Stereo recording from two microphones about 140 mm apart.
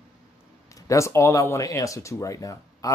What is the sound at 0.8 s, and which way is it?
Speech, 20° left (ahead or behind).